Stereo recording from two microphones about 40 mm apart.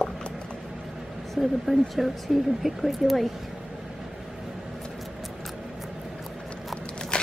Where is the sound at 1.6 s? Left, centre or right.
Centre.